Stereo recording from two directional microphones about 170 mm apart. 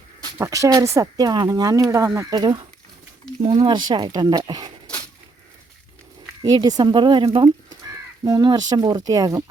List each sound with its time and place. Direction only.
0.3 s speech: 15° right (ahead or behind)
6.4 s speech: 20° right (ahead or behind)